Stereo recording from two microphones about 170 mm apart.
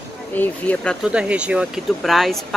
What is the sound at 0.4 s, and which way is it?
Speech, 10° left (ahead or behind).